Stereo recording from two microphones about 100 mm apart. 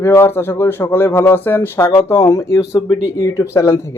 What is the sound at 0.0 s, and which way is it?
Speech, 25° left (ahead or behind).